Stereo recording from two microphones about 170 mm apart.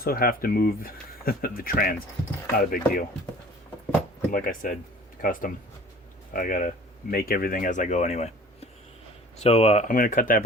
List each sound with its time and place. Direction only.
0.0 s speech: 60° left (ahead or behind)
4.3 s speech: 55° left (ahead or behind)